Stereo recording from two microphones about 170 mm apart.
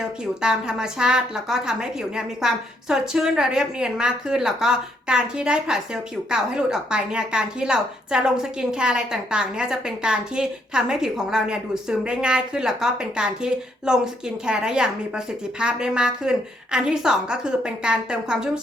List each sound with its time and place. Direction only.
0.0 s speech: 5° right (ahead or behind)